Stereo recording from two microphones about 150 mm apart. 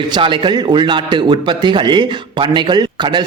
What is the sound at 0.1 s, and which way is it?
A man's voice, 30° right (ahead or behind).